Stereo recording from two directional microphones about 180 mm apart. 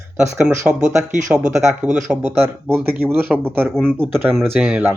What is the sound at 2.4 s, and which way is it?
Speech, 15° right (ahead or behind).